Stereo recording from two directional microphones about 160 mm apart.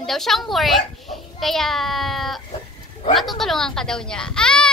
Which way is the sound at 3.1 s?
Centre (ahead or behind).